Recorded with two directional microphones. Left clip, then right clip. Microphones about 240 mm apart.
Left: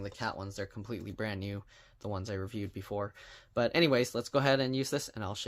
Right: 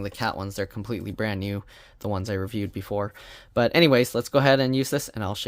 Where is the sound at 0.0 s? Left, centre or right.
Right.